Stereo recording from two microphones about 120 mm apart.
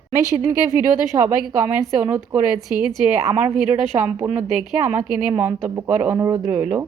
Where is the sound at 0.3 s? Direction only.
30° right (ahead or behind); by 2.8 s 15° right (ahead or behind).